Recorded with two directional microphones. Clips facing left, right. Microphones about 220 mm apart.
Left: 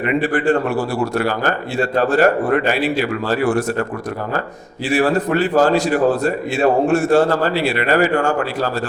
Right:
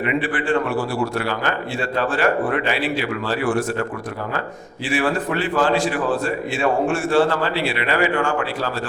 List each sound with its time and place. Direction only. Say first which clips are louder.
0.0 s a man's voice: left 5 dB; 40° left (ahead or behind)
4.9 s a man's voice: left 5 dB; 40° left (ahead or behind)